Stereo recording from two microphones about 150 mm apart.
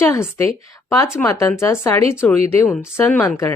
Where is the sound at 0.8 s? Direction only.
20° left (ahead or behind).